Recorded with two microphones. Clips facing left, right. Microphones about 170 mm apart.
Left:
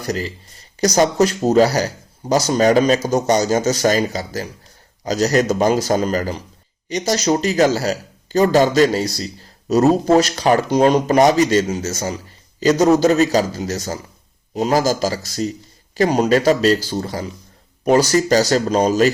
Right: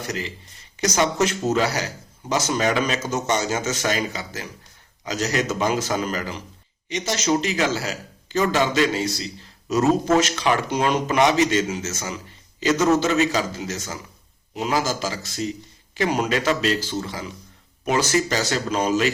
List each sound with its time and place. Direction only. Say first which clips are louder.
0.0 s speech: left 6 dB; 35° left (ahead or behind)